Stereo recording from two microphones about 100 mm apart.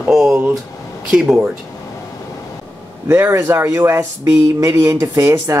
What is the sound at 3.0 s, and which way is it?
Speech, 25° right (ahead or behind).